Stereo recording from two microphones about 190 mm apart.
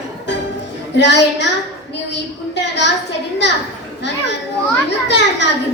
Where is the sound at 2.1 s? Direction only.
65° left (ahead or behind).